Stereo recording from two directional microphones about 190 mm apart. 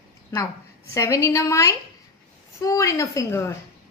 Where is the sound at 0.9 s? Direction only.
15° left (ahead or behind).